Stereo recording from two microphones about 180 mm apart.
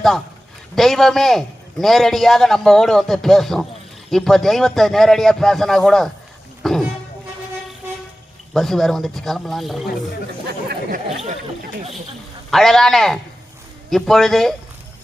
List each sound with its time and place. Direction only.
0.8 s a man's voice: centre (ahead or behind)
8.5 s a man's voice: centre (ahead or behind)
10.4 s speech: 60° right (ahead or behind)
12.5 s a man's voice: centre (ahead or behind)